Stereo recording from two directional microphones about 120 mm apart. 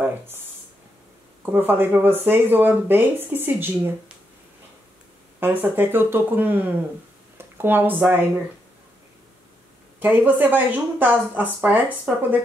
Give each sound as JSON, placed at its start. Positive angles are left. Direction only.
{"t": 1.4, "sound": "speech", "side_deg": -15}
{"t": 5.4, "sound": "speech", "side_deg": -15}
{"t": 9.9, "sound": "speech", "side_deg": -15}